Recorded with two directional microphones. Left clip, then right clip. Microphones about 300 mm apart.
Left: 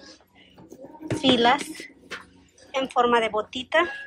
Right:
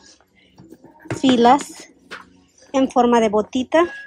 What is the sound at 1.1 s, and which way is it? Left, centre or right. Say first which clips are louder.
A woman's voice: right 6 dB; centre.